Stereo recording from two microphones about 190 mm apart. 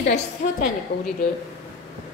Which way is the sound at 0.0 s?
45° left (ahead or behind).